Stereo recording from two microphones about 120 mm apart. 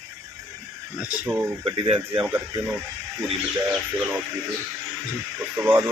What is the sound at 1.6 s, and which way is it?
Speech, 45° right (ahead or behind).